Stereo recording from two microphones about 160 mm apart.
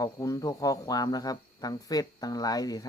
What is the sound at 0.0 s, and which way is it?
Speech, 20° left (ahead or behind).